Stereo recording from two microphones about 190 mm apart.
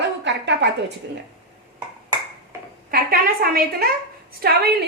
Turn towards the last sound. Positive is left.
turn(degrees=-55)  # may be behind; listen again after turning